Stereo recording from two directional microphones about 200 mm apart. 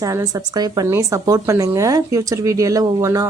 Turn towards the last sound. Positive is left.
turn(degrees=-15)  # may be behind; listen again after turning